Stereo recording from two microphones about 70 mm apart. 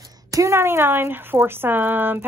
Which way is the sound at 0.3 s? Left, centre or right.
Right.